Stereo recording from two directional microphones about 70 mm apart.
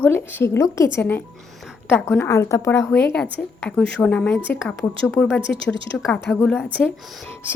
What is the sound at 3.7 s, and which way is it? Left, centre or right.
Speech, centre.